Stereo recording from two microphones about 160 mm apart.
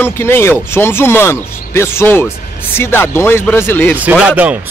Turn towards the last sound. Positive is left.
turn(degrees=-10)  # may be behind; listen again after turning